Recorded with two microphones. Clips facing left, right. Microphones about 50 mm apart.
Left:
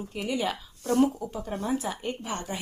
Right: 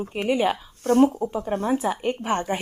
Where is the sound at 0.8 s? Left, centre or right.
Right.